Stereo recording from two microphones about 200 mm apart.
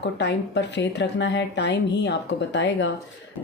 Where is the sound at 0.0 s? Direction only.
60° left (ahead or behind).